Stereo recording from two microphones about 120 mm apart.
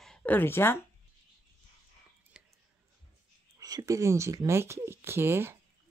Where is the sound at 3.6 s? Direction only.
30° right (ahead or behind).